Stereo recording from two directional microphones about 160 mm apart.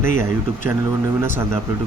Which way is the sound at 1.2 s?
15° right (ahead or behind).